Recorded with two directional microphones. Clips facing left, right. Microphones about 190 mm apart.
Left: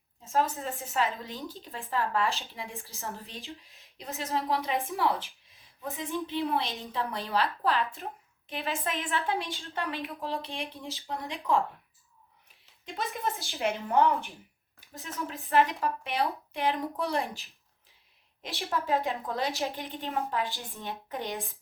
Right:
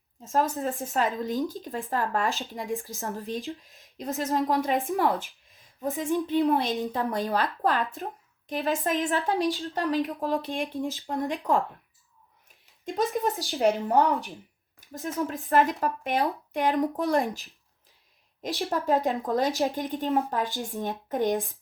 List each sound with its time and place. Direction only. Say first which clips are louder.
0.3 s a woman's voice: right 3 dB; 45° right (ahead or behind)
12.8 s speech: right 7 dB; 45° right (ahead or behind)
18.4 s speech: right 5 dB; 40° right (ahead or behind)